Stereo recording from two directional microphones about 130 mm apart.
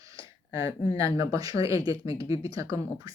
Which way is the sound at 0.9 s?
25° right (ahead or behind).